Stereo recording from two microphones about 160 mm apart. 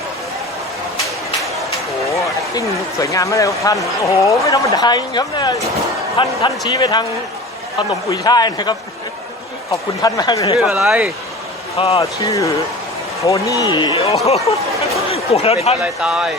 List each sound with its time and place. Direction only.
2.0 s speech: 20° left (ahead or behind)
10.0 s speech: 25° left (ahead or behind)
10.6 s speech: centre (ahead or behind)
11.8 s speech: 40° left (ahead or behind)
12.2 s speech: 20° left (ahead or behind)
13.7 s speech: 30° left (ahead or behind)
15.8 s speech: 5° right (ahead or behind)